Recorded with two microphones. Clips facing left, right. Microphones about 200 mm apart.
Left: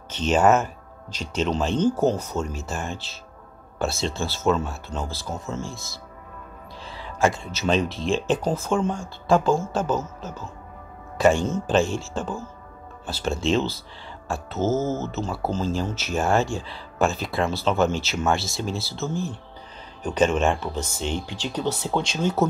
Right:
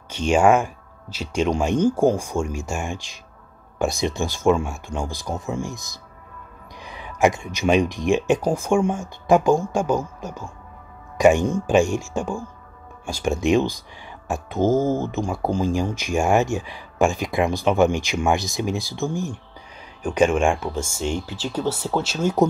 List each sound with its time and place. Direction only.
0.1 s speech: 10° right (ahead or behind)
6.8 s a sound: 15° right (ahead or behind)
7.9 s speech: 15° right (ahead or behind)